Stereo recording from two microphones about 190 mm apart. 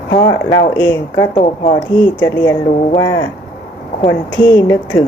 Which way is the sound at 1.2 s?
30° left (ahead or behind).